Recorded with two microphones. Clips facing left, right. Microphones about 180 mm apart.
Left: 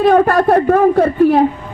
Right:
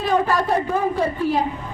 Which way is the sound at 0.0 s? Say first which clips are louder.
Left 9 dB; 60° left (ahead or behind).